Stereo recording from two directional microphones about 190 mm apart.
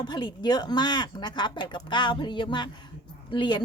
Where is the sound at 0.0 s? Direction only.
25° left (ahead or behind).